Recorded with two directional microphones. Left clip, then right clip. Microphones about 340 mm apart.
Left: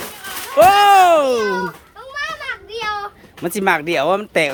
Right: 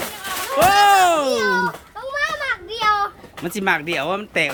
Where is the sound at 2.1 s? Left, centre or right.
Centre.